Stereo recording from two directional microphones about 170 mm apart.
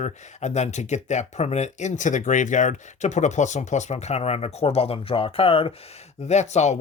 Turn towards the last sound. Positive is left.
turn(degrees=40)  # may be behind; listen again after turning